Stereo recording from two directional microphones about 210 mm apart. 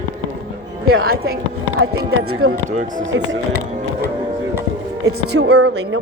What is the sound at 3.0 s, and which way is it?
Speech, 65° right (ahead or behind).